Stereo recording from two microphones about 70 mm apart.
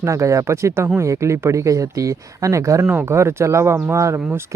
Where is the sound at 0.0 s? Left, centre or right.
Right.